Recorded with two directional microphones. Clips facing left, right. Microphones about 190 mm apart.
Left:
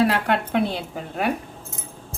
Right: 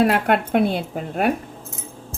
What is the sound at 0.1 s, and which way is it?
A woman's voice, 55° right (ahead or behind).